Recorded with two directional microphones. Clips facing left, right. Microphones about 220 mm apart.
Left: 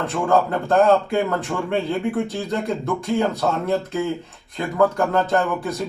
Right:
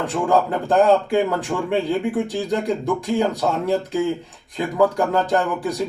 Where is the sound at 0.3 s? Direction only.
Centre (ahead or behind).